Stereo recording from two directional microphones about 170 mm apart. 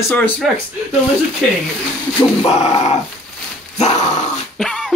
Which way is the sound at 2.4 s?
35° left (ahead or behind).